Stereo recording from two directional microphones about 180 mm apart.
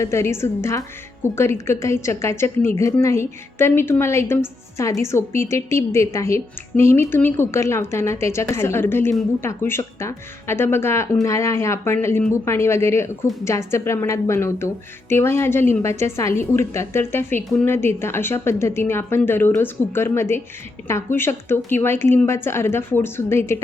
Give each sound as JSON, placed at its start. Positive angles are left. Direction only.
{"t": 0.0, "sound": "a woman's voice", "side_deg": 15}